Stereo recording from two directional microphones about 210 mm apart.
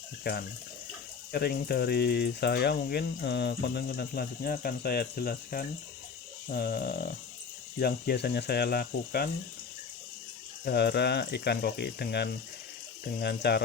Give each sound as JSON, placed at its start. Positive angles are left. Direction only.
{"t": 0.3, "sound": "speech", "side_deg": 50}
{"t": 10.7, "sound": "speech", "side_deg": 50}